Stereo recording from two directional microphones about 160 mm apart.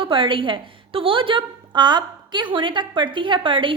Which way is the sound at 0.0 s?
30° right (ahead or behind).